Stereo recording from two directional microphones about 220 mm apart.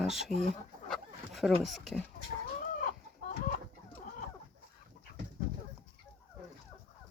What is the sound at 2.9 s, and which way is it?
Chicken, 40° left (ahead or behind).